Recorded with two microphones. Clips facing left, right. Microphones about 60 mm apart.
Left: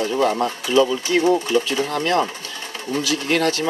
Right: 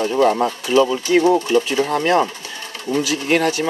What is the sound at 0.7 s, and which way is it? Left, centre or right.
Speech, right.